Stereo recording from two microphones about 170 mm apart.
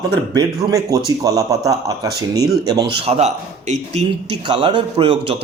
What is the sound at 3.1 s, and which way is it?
Speech, 40° right (ahead or behind).